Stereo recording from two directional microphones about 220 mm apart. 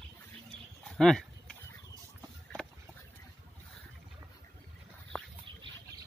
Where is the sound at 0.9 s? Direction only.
Centre (ahead or behind).